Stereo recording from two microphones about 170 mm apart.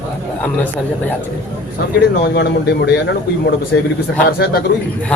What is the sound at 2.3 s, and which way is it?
Speech, 85° left.